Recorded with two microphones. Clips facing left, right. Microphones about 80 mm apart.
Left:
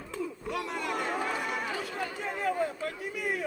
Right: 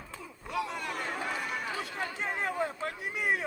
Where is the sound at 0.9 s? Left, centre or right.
Left.